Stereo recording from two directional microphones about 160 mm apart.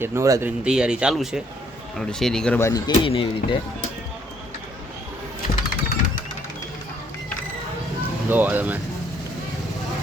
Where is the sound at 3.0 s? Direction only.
35° left (ahead or behind).